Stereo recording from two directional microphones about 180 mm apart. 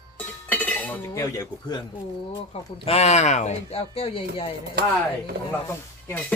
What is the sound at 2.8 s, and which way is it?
Speech, 35° left (ahead or behind).